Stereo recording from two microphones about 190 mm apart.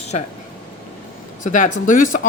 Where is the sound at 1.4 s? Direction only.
40° left (ahead or behind).